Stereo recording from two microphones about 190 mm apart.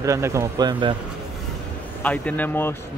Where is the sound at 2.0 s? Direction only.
10° left (ahead or behind).